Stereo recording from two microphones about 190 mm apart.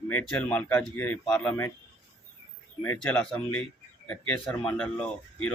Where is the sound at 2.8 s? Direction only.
5° left (ahead or behind).